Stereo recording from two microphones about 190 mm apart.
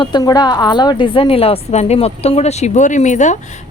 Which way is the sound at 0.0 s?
20° left (ahead or behind).